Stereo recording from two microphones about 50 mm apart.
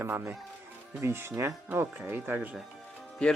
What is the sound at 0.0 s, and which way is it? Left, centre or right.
Speech, right.